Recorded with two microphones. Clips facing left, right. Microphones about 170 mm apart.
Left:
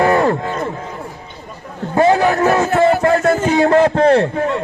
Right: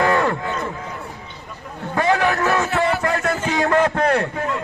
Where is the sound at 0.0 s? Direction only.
30° left (ahead or behind).